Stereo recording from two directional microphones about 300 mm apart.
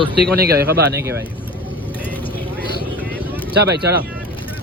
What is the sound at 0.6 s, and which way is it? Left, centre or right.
Speech, right.